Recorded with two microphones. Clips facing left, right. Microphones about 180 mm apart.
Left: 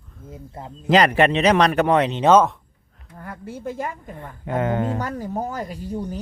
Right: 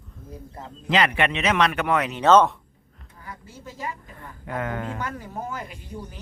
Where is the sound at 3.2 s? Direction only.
60° left (ahead or behind).